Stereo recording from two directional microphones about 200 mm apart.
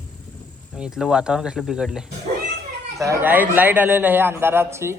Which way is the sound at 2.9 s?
15° right (ahead or behind).